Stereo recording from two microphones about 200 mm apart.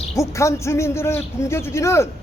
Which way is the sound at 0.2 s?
15° left (ahead or behind).